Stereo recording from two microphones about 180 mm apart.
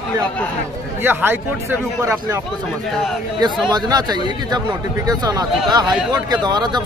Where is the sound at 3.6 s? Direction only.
20° right (ahead or behind).